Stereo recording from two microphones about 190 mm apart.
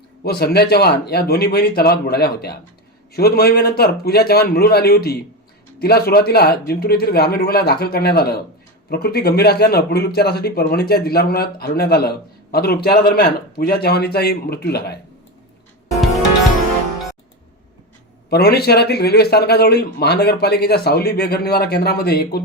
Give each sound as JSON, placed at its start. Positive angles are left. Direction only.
{"t": 0.2, "sound": "a man's voice", "side_deg": 55}
{"t": 18.3, "sound": "a man's voice", "side_deg": 55}